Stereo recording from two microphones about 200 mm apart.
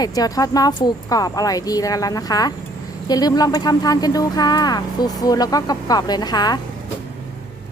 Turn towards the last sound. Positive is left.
turn(degrees=20)  # may be behind; listen again after turning